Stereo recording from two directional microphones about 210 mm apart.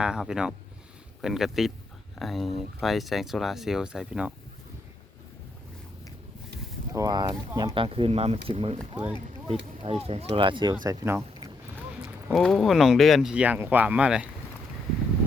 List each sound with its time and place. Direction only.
0.0 s speech: 5° right (ahead or behind)
6.9 s speech: 20° right (ahead or behind)
9.8 s speech: 30° right (ahead or behind)
10.8 s boat: 15° right (ahead or behind)
12.3 s speech: centre (ahead or behind)